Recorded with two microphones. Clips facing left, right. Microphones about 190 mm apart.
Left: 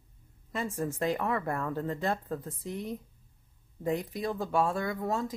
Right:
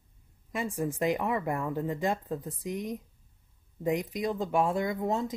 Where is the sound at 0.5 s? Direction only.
15° right (ahead or behind).